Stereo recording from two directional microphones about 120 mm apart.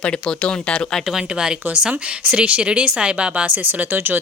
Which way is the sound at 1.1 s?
5° right (ahead or behind).